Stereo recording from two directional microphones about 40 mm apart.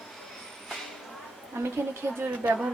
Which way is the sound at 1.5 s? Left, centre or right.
Right.